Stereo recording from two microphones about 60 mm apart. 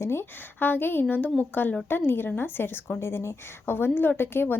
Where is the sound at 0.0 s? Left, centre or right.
Left.